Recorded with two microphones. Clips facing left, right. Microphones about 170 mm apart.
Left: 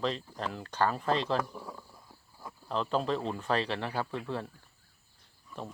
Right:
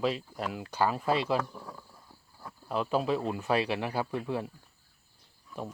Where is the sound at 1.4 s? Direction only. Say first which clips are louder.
Left 1 dB; 5° left (ahead or behind).